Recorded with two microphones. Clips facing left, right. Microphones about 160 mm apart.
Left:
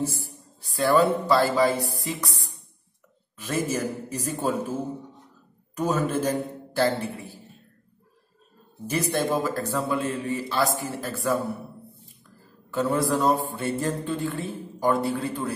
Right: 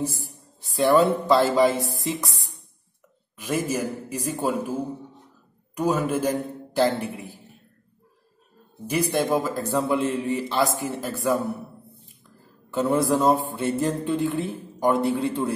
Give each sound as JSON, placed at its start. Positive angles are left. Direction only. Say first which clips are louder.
{"t": 0.7, "sound": "mantra", "louder": "right 2 dB", "side_deg": -20}
{"t": 3.3, "sound": "a man's voice", "louder": "right 1 dB", "side_deg": -15}
{"t": 8.8, "sound": "a man's voice", "louder": "right 2 dB", "side_deg": -10}
{"t": 12.7, "sound": "mantra", "louder": "right 2 dB", "side_deg": -20}